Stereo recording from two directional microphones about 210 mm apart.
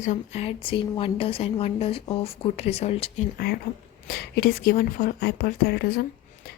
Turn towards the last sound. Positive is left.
turn(degrees=50)  # may be behind; listen again after turning